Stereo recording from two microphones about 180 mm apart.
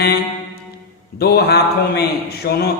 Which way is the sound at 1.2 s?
60° left (ahead or behind).